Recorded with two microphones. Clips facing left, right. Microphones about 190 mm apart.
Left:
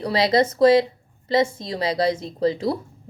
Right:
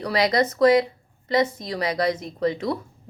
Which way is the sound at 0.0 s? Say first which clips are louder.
Left 2 dB; 25° left (ahead or behind).